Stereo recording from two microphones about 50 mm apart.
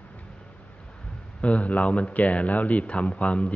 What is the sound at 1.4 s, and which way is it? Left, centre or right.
Speech, left.